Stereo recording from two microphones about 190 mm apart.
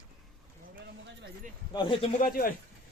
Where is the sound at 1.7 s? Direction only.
25° left (ahead or behind).